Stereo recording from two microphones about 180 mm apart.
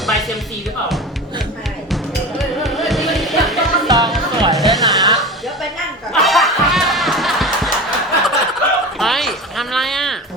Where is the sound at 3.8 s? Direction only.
20° right (ahead or behind).